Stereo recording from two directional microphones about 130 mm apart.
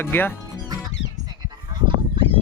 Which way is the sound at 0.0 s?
15° left (ahead or behind).